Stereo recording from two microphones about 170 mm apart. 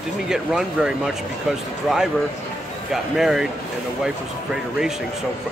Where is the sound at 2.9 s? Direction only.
Centre (ahead or behind).